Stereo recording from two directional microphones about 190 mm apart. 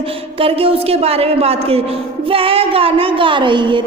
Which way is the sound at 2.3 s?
30° right (ahead or behind).